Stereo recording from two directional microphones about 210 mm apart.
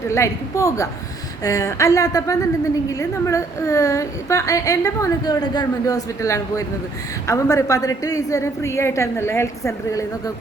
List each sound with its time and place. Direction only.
0.1 s a woman's voice: 15° left (ahead or behind)